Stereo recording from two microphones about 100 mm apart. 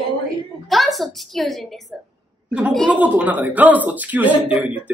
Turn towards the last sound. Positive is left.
turn(degrees=-10)  # may be behind; listen again after turning